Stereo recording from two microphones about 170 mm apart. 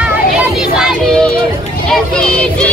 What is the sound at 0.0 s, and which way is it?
Music, 5° right (ahead or behind).